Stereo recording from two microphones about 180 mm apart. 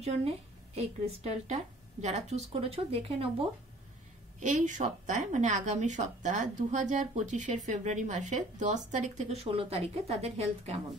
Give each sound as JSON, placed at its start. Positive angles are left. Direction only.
{"t": 0.0, "sound": "a woman's voice", "side_deg": -35}
{"t": 4.4, "sound": "a woman's voice", "side_deg": -45}